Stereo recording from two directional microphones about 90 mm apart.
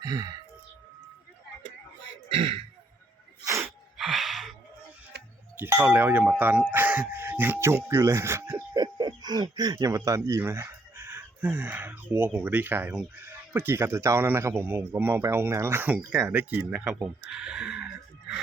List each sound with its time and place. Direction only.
0.0 s a sound: 50° right (ahead or behind)
2.3 s speech: 90° right
3.6 s gasp: 5° right (ahead or behind)
5.5 s speech: 30° right (ahead or behind)
8.7 s a sound: 50° right (ahead or behind)
10.2 s speech: 35° right (ahead or behind)
16.8 s speech: 5° right (ahead or behind)